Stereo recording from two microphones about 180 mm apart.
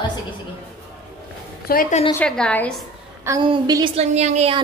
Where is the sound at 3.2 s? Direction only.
25° right (ahead or behind).